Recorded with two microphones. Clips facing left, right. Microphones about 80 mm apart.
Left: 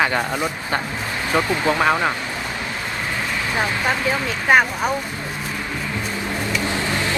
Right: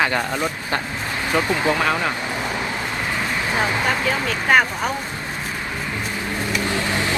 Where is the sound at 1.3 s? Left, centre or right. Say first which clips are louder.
Left 1 dB; left.